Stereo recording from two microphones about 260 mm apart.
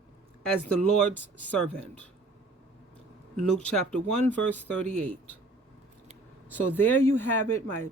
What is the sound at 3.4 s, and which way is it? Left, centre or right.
Speech, centre.